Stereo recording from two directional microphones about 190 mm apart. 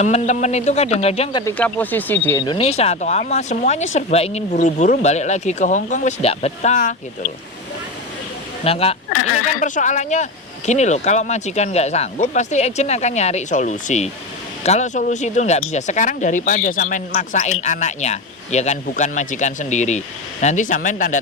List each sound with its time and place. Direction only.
0.0 s speech: 40° left (ahead or behind); by 1.5 s 25° left (ahead or behind)
1.5 s speech: 10° left (ahead or behind)
2.4 s speech: 25° left (ahead or behind); by 7.3 s 40° left (ahead or behind)
8.6 s speech: 30° left (ahead or behind)
9.1 s speech: 90° left
9.6 s speech: 40° left (ahead or behind)